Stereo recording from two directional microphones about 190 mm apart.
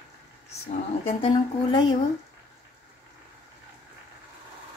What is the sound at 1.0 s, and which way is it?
Speech, 30° left (ahead or behind).